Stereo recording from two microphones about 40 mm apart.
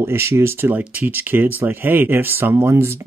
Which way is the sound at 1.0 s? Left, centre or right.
Right.